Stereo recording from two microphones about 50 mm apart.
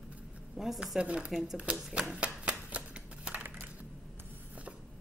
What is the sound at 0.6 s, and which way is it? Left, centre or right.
Speech, centre.